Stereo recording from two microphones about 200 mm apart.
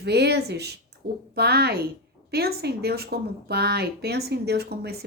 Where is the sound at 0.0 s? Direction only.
55° right (ahead or behind).